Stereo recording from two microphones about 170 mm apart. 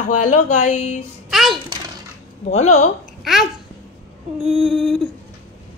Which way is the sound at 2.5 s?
40° left (ahead or behind).